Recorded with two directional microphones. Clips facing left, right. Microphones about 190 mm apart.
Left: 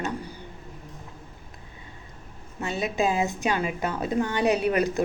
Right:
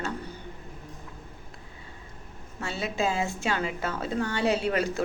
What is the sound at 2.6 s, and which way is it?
A woman's voice, 20° left (ahead or behind).